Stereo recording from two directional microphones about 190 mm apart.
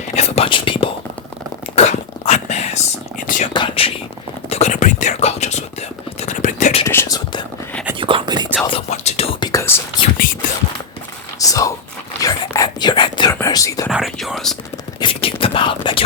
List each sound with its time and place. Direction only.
0.2 s whispering: 30° left (ahead or behind)
1.7 s a sound: 35° left (ahead or behind)
3.2 s whispering: 40° left (ahead or behind)
3.5 s whispering: 25° left (ahead or behind)
6.8 s whispering: 15° left (ahead or behind)
7.9 s whispering: 25° right (ahead or behind)
8.6 s whispering: 30° left (ahead or behind)
9.5 s whispering: 15° left (ahead or behind)
11.3 s biting: 15° left (ahead or behind)
12.2 s whispering: 20° left (ahead or behind)
13.9 s whispering: centre (ahead or behind)
15.0 s whispering: 30° left (ahead or behind)